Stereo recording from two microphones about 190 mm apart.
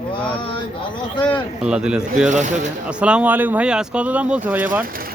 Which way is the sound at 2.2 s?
40° right (ahead or behind).